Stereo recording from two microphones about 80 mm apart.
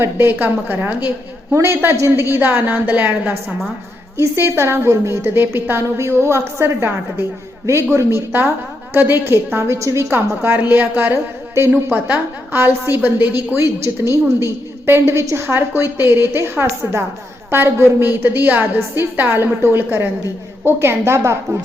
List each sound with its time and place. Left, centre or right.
0.0 s a woman's voice: right
11.7 s a woman's voice: centre